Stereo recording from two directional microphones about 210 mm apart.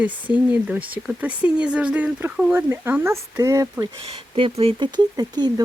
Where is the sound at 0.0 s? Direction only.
5° right (ahead or behind).